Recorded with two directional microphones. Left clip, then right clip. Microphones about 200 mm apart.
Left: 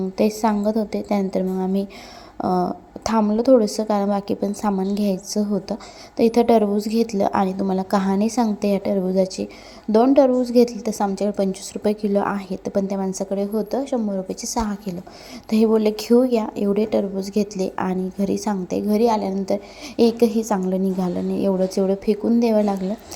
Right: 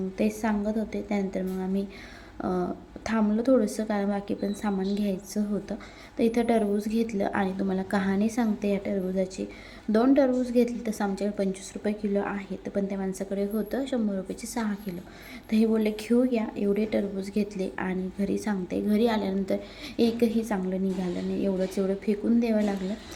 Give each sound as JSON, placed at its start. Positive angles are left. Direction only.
{"t": 0.2, "sound": "a woman's voice", "side_deg": 30}